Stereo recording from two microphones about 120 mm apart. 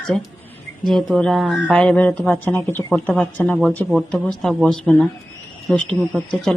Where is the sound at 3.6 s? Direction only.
5° left (ahead or behind).